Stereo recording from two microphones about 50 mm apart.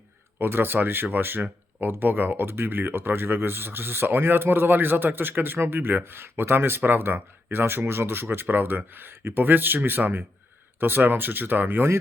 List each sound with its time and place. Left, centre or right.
0.3 s speech: right